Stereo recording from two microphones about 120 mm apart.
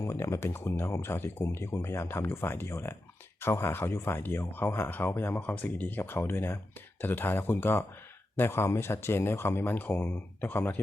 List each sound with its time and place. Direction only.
0.0 s speech: 25° left (ahead or behind)